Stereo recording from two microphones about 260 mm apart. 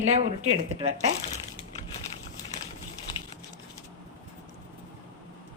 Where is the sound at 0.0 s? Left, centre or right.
Right.